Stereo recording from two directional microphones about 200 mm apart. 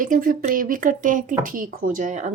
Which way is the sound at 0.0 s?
40° right (ahead or behind).